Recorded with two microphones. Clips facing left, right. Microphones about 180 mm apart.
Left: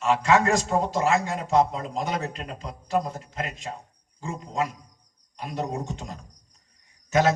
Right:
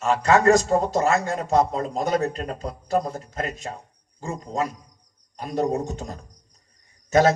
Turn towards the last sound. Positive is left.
turn(degrees=-40)  # may be behind; listen again after turning